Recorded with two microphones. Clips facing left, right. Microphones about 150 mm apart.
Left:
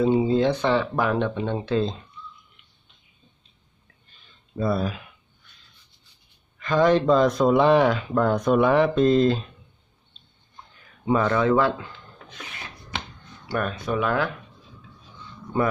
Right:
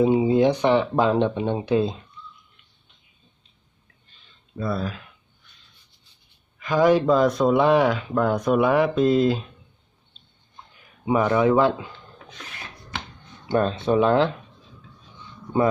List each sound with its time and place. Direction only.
0.0 s speech: 15° right (ahead or behind)
4.7 s speech: 10° left (ahead or behind)
6.6 s speech: 10° right (ahead or behind)
11.1 s speech: 15° right (ahead or behind)
13.5 s speech: 25° right (ahead or behind)